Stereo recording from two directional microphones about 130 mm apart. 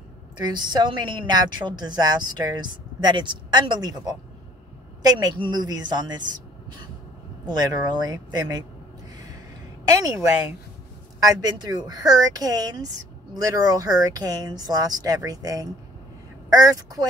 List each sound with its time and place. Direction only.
0.5 s a woman's voice: 35° right (ahead or behind)
7.4 s a woman's voice: 30° right (ahead or behind)
9.8 s speech: 25° right (ahead or behind)
11.2 s speech: 30° right (ahead or behind)